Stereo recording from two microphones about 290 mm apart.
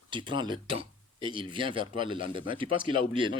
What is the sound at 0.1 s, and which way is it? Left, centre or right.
Speech, centre.